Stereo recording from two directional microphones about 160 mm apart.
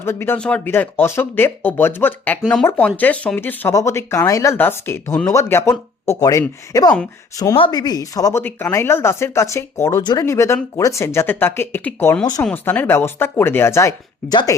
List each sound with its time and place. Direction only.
0.0 s speech: 15° left (ahead or behind)
2.4 s speech: centre (ahead or behind)
2.6 s speech: 10° left (ahead or behind)